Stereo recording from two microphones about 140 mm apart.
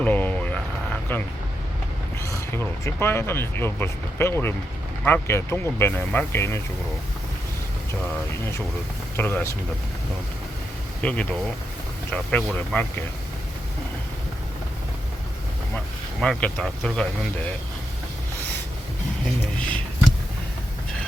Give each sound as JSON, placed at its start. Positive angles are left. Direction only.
{"t": 0.0, "sound": "a sound", "side_deg": 10}
{"t": 2.2, "sound": "speech", "side_deg": 20}
{"t": 9.1, "sound": "speech", "side_deg": 15}
{"t": 11.0, "sound": "speech", "side_deg": 10}
{"t": 16.2, "sound": "speech", "side_deg": 5}